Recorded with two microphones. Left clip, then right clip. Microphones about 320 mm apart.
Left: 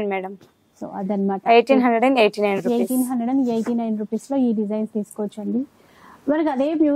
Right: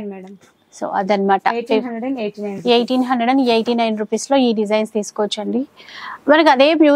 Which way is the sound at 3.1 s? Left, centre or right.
Centre.